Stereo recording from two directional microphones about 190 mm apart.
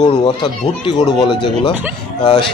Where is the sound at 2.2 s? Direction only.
25° left (ahead or behind).